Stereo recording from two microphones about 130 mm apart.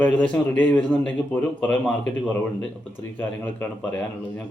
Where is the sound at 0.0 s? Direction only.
10° left (ahead or behind).